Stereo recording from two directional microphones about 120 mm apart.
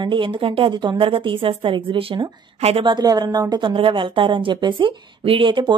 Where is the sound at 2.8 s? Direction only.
35° right (ahead or behind).